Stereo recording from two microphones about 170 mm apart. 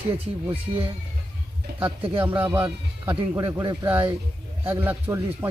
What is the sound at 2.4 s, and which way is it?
Speech, 15° right (ahead or behind).